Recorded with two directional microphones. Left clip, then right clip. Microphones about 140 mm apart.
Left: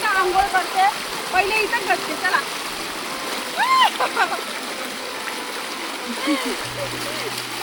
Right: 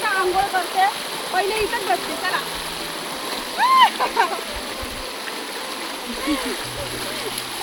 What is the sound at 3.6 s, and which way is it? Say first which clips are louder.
Splash: right 2 dB; 20° left (ahead or behind).